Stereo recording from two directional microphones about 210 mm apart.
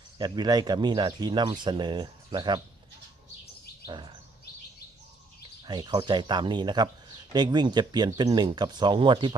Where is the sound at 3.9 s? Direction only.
20° right (ahead or behind).